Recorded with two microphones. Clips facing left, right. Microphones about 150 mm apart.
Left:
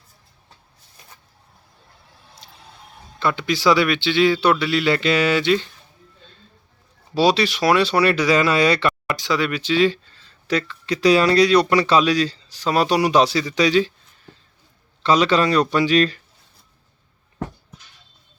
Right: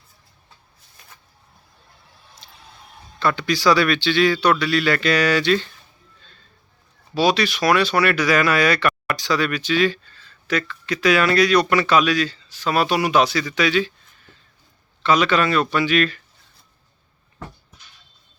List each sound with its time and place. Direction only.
3.2 s speech: 20° left (ahead or behind)
7.1 s speech: 30° left (ahead or behind)
15.0 s speech: 35° left (ahead or behind)